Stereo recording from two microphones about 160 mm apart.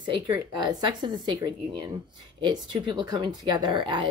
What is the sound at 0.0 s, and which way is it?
Speech, 30° right (ahead or behind).